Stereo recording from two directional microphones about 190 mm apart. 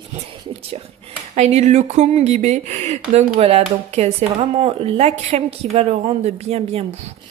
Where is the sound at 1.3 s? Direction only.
35° right (ahead or behind).